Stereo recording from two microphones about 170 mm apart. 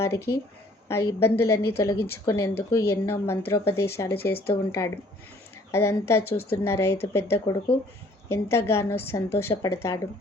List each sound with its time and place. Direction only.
0.0 s speech: 15° left (ahead or behind)